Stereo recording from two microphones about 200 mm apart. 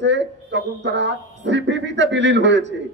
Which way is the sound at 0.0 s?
65° right (ahead or behind).